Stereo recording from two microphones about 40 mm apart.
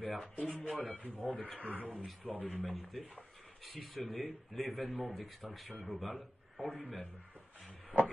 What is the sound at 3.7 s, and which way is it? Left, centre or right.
Speech, centre.